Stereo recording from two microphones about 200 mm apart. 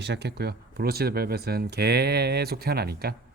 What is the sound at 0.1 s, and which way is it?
Speech, 55° right (ahead or behind).